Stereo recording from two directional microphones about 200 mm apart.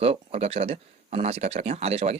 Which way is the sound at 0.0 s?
30° right (ahead or behind).